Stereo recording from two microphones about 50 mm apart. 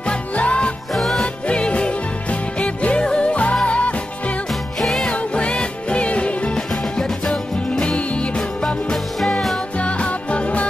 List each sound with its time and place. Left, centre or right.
0.1 s music: left
0.9 s music: centre
1.5 s music: left
4.7 s music: centre
5.1 s music: left
6.7 s music: centre
9.8 s music: left